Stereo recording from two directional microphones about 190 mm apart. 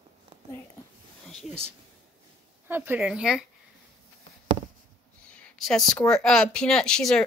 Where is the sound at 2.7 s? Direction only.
10° right (ahead or behind).